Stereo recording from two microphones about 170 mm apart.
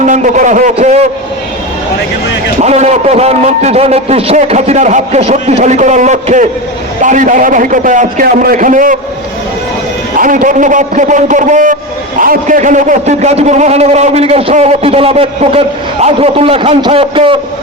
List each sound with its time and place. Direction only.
0.0 s a sound: 45° right (ahead or behind)
2.6 s a man's voice: 40° right (ahead or behind)
10.2 s a man's voice: 50° right (ahead or behind); by 17.3 s 35° right (ahead or behind)